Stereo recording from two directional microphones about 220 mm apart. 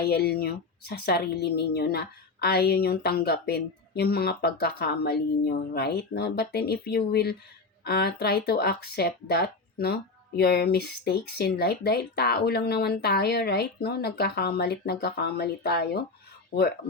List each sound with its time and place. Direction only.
0.0 s speech: 45° left (ahead or behind)